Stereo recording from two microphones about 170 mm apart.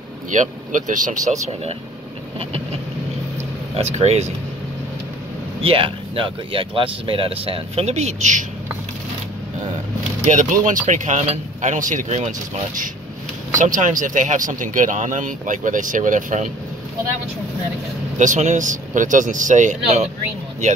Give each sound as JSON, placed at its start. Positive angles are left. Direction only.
{"t": 0.3, "sound": "speech", "side_deg": -50}
{"t": 3.9, "sound": "speech", "side_deg": -40}
{"t": 5.6, "sound": "speech", "side_deg": -30}
{"t": 10.2, "sound": "speech", "side_deg": -45}
{"t": 18.1, "sound": "speech", "side_deg": -45}